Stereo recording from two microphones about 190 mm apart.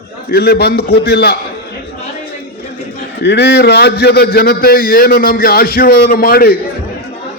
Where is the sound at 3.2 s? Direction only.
60° left (ahead or behind).